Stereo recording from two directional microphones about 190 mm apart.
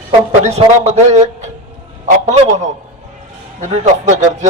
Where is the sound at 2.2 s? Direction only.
40° right (ahead or behind).